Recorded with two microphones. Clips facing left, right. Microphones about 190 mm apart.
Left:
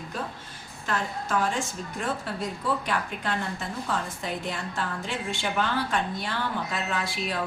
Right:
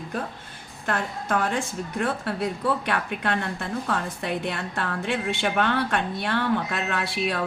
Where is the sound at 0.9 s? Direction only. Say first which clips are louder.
Right 3 dB; 60° right (ahead or behind).